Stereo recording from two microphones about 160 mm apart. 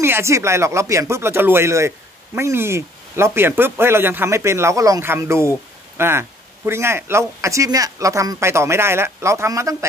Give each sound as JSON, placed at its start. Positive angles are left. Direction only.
{"t": 0.0, "sound": "speech", "side_deg": -15}